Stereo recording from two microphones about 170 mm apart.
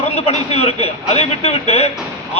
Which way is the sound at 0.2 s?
40° left (ahead or behind).